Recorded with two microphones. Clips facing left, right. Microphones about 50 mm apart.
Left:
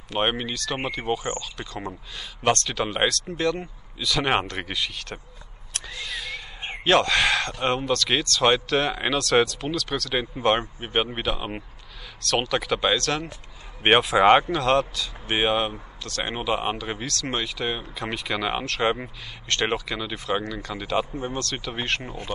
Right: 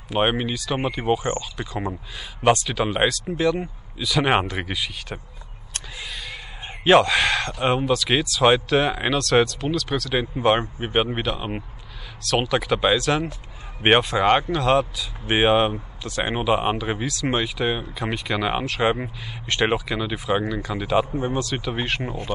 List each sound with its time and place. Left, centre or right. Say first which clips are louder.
0.1 s speech: right 3 dB; centre
5.9 s a sound: left 2 dB; centre
6.8 s speech: right 4 dB; centre
15.2 s speech: right 5 dB; right
16.0 s speech: right 4 dB; centre
17.9 s speech: right 3 dB; centre
22.0 s speech: right 5 dB; right